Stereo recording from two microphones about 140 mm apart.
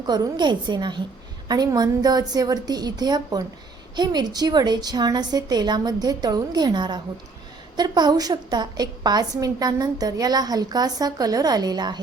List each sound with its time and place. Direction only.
0.0 s a woman's voice: 30° right (ahead or behind)